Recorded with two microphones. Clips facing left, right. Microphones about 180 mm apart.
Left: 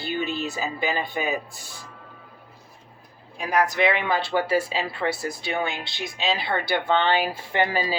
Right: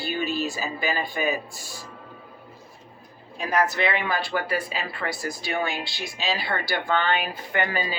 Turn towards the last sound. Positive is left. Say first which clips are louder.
# left 3 dB
turn(degrees=30)  # may be behind; listen again after turning